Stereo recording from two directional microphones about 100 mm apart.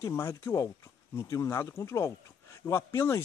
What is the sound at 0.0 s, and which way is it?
Speech, 25° left (ahead or behind).